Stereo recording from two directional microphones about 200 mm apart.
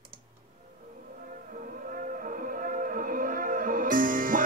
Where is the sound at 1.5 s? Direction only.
45° right (ahead or behind).